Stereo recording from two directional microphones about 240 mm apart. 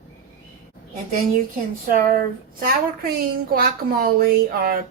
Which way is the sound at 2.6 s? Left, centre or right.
Right.